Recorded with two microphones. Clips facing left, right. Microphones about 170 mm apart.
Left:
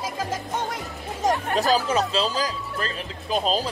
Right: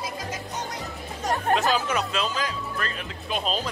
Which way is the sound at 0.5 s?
90° left.